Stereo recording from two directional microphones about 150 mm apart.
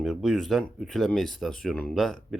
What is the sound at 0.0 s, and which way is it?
Speech, centre (ahead or behind).